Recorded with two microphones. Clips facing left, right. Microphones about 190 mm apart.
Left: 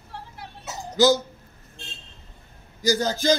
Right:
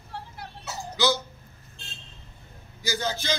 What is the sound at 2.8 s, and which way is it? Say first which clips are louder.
Speech: left 8 dB; 40° left (ahead or behind).